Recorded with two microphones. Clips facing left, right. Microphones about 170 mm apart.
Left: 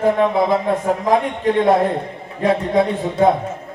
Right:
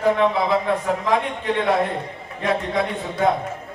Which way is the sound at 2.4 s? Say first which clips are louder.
Left 6 dB; 35° left (ahead or behind).